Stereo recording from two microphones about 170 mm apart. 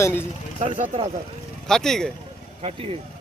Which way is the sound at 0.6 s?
35° right (ahead or behind).